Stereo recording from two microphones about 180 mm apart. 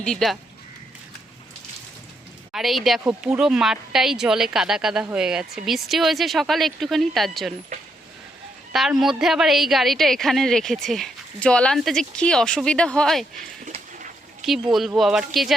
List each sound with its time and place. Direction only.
0.0 s a woman's voice: centre (ahead or behind)
2.5 s a woman's voice: centre (ahead or behind)
8.7 s a woman's voice: centre (ahead or behind)
13.7 s a sound: 45° right (ahead or behind)
14.7 s a woman's voice: centre (ahead or behind)